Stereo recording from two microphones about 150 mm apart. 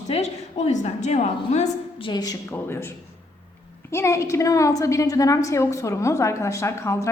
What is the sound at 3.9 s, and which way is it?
A woman's voice, 20° left (ahead or behind).